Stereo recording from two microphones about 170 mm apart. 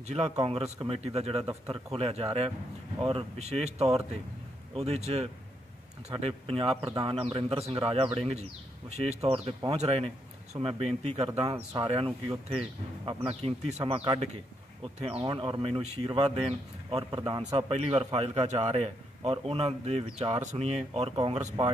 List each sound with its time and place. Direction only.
0.0 s speech: 35° right (ahead or behind)